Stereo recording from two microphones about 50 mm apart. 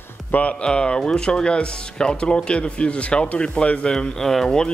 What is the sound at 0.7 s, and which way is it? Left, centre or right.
Speech, centre.